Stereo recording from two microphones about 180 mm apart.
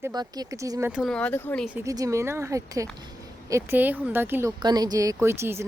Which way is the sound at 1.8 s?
20° right (ahead or behind).